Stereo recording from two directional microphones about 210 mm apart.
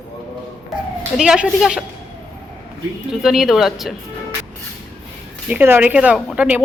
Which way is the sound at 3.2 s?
Centre (ahead or behind).